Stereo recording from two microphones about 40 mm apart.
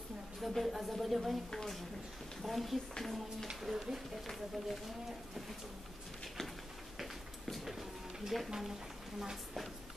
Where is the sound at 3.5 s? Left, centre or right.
Centre.